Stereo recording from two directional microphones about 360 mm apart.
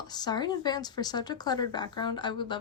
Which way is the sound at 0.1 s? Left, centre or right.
Centre.